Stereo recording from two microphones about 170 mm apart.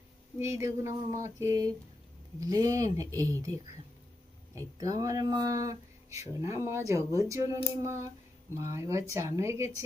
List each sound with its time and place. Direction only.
0.3 s speech: 15° right (ahead or behind)
4.5 s speech: 20° right (ahead or behind)